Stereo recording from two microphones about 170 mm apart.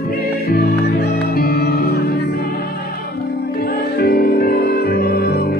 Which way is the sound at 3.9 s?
70° left (ahead or behind).